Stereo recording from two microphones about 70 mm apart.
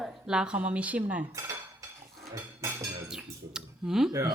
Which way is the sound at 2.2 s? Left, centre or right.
Right.